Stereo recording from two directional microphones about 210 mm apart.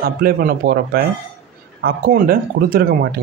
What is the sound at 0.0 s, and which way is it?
Speech, 45° right (ahead or behind).